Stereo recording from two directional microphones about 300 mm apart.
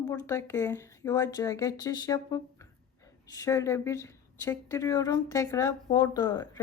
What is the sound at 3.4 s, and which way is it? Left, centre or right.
Speech, centre.